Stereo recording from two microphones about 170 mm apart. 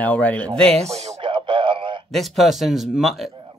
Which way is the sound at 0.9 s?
40° right (ahead or behind).